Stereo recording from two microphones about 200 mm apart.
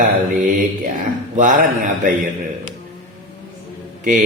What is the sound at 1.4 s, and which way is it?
Speech, 40° right (ahead or behind).